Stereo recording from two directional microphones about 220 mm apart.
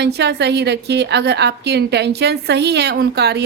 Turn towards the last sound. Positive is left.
turn(degrees=-50)  # may be behind; listen again after turning